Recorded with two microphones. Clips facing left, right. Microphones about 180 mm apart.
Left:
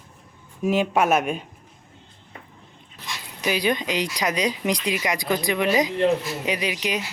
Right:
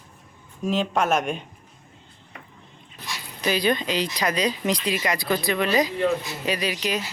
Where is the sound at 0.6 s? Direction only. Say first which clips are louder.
Left 3 dB; 10° left (ahead or behind).